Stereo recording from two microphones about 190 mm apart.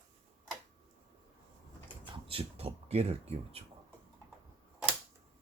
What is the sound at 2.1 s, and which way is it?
Speech, 30° right (ahead or behind).